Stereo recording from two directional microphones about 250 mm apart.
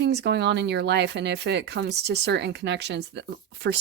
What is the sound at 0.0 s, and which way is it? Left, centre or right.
Speech, right.